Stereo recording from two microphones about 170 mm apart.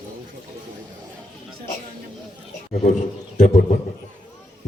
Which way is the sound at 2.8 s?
45° left (ahead or behind).